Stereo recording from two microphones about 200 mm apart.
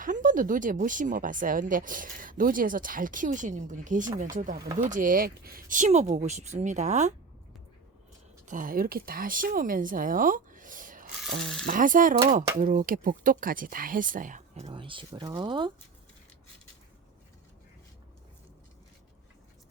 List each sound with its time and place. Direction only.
0.0 s speech: 40° right (ahead or behind)
8.4 s speech: 45° right (ahead or behind)
11.3 s speech: centre (ahead or behind)
11.6 s speech: 45° right (ahead or behind); by 15.7 s 25° right (ahead or behind)